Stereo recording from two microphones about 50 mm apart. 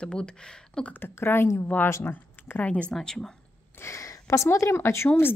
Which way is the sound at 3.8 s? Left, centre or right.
Left.